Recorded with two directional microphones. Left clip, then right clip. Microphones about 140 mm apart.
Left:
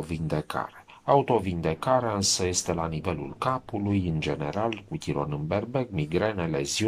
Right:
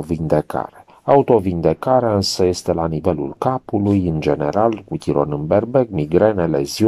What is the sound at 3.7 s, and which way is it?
Speech, 35° right (ahead or behind).